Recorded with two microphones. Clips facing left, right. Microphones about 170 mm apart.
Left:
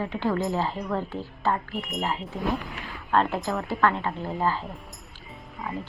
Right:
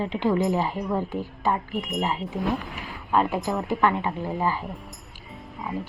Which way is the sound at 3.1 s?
10° right (ahead or behind).